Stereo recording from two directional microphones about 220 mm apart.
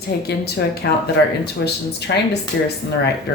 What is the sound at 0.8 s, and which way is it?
Speech, 45° left (ahead or behind).